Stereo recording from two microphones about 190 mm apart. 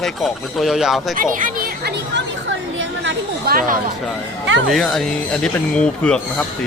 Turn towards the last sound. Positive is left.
turn(degrees=5)  # may be behind; listen again after turning